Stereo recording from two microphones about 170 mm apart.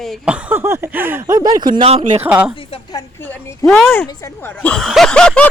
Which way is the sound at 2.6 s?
30° left (ahead or behind).